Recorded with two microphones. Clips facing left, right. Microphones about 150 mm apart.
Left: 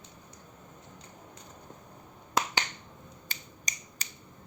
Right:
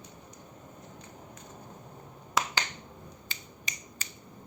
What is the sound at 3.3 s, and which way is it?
Finger snapping, 40° left (ahead or behind).